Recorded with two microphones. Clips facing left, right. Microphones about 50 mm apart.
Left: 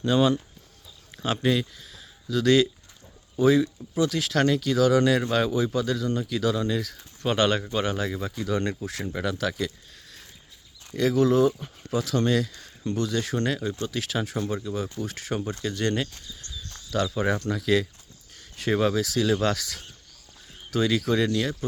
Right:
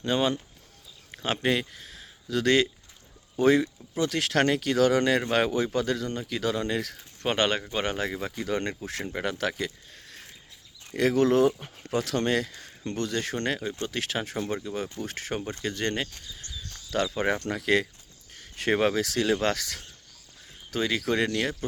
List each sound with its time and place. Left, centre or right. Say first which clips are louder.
0.0 s speech: left 4 dB; right
3.3 s speech: left 1 dB; right
3.9 s speech: left 1 dB; right
9.4 s a sound: left 1 dB; right
10.9 s speech: left 1 dB; right
12.8 s speech: left 3 dB; right
16.1 s a sound: even; right
16.9 s speech: left 1 dB; right
20.7 s speech: left 4 dB; right
21.1 s speech: left 2 dB; right